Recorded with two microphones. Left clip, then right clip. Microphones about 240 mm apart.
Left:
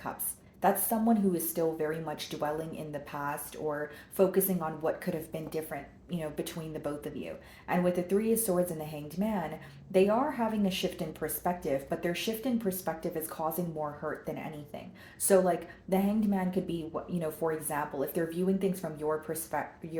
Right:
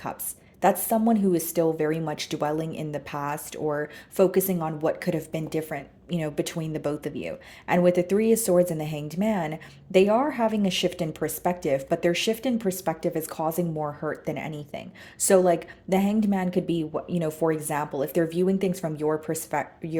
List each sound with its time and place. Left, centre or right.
0.6 s speech: right